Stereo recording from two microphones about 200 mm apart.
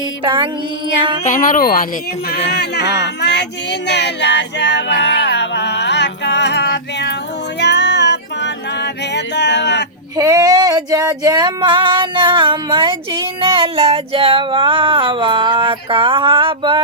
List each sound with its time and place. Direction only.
1.2 s speech: 40° left (ahead or behind)
2.5 s a sound: 55° left (ahead or behind)
7.6 s music: 60° left (ahead or behind)
10.2 s female singing: 15° right (ahead or behind)